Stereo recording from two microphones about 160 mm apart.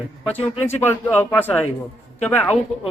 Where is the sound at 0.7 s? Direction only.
15° left (ahead or behind).